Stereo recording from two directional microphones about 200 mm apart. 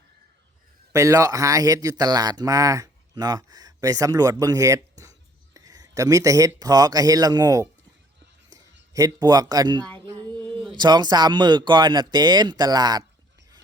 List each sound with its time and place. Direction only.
0.9 s speech: 15° right (ahead or behind)
8.9 s speech: 20° right (ahead or behind)
10.4 s a sound: 5° left (ahead or behind)
10.7 s speech: 20° right (ahead or behind)